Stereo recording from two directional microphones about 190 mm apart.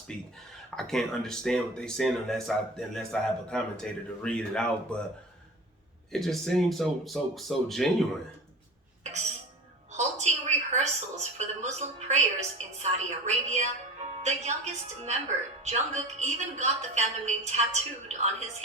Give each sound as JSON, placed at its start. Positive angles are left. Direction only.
{"t": 0.1, "sound": "speech", "side_deg": 5}
{"t": 6.1, "sound": "speech", "side_deg": 0}
{"t": 9.9, "sound": "a sound", "side_deg": -35}
{"t": 14.2, "sound": "a woman's voice", "side_deg": -35}